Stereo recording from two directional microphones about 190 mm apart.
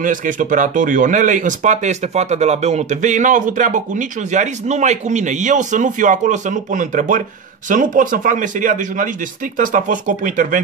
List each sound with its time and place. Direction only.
0.0 s speech: 45° right (ahead or behind)